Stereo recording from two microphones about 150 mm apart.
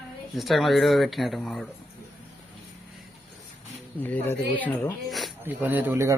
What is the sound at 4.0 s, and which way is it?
Speech, 10° left (ahead or behind).